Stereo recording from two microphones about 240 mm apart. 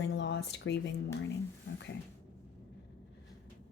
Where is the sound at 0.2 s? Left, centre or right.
Left.